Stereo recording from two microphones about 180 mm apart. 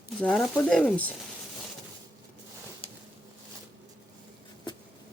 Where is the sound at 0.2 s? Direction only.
Centre (ahead or behind).